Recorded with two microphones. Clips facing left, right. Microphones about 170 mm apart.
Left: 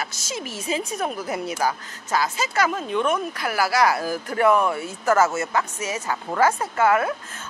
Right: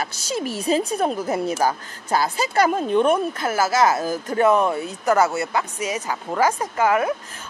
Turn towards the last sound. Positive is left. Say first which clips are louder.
# even
turn(degrees=-15)  # may be behind; listen again after turning